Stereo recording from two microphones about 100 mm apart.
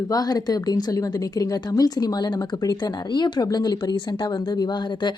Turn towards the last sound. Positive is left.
turn(degrees=45)  # may be behind; listen again after turning